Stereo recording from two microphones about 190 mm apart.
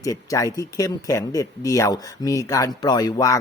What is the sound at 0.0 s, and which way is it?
Speech, 15° left (ahead or behind).